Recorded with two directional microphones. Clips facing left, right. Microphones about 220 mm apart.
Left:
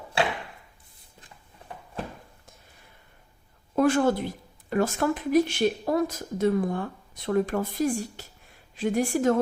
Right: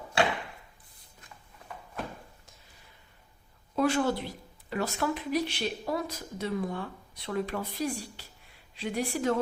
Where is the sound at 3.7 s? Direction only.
50° left (ahead or behind).